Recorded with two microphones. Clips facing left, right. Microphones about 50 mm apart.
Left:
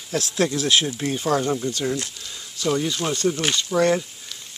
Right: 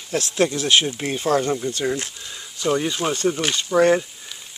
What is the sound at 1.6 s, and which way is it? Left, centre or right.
Speech, centre.